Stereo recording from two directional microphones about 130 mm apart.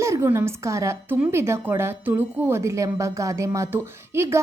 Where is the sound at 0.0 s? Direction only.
20° right (ahead or behind).